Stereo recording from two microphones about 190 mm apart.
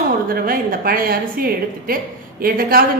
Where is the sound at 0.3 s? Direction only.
50° right (ahead or behind).